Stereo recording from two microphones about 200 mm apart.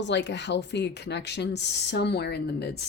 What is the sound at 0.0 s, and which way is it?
Speech, 60° left (ahead or behind).